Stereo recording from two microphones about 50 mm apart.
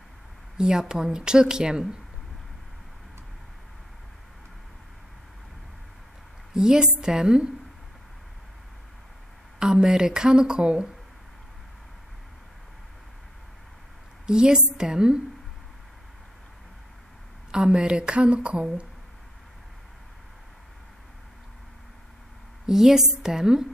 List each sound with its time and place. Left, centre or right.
0.6 s speech: centre
6.5 s speech: centre
9.6 s speech: centre
14.2 s speech: centre
17.5 s speech: centre
22.7 s speech: centre